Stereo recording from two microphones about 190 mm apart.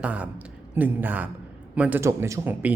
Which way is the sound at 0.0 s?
5° right (ahead or behind).